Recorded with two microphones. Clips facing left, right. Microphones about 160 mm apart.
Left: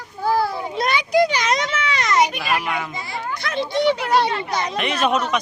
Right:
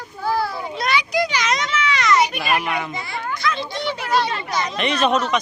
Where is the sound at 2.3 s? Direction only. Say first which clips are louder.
Right 1 dB; 15° right (ahead or behind).